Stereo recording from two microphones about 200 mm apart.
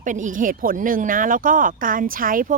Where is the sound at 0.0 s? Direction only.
40° right (ahead or behind).